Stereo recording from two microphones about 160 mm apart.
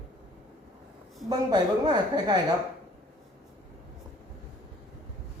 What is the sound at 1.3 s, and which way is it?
A woman's voice, 25° right (ahead or behind).